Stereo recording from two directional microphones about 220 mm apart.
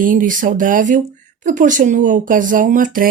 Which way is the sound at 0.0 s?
40° right (ahead or behind).